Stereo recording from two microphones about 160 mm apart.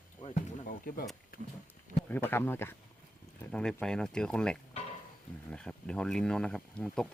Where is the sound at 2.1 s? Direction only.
10° left (ahead or behind).